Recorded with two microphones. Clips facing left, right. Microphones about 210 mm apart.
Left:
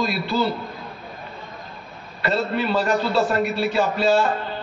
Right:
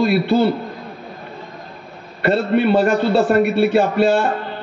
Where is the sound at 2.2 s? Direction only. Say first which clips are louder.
Right 7 dB; 60° right (ahead or behind).